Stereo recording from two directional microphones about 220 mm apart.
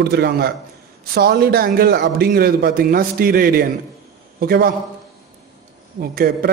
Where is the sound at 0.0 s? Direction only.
45° right (ahead or behind).